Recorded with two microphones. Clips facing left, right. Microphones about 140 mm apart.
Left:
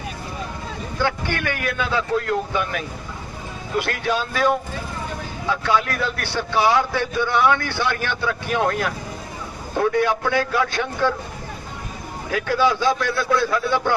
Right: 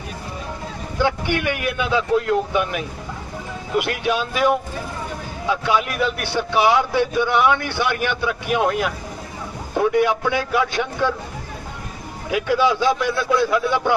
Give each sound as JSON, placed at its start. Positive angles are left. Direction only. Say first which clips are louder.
{"t": 1.0, "sound": "speech", "louder": "right 3 dB", "side_deg": -15}
{"t": 12.3, "sound": "speech", "louder": "right 1 dB", "side_deg": -15}